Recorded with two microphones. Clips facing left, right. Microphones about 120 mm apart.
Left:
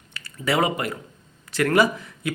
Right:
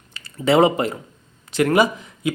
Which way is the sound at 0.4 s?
25° right (ahead or behind).